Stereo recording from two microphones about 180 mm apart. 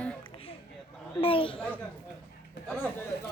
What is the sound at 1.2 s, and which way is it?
Speech, 30° left (ahead or behind).